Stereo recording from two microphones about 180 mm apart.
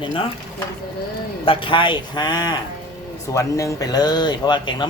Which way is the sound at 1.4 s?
30° left (ahead or behind).